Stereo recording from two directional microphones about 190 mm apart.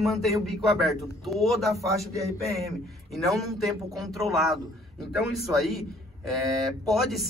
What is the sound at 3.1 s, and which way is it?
A man's voice, centre (ahead or behind).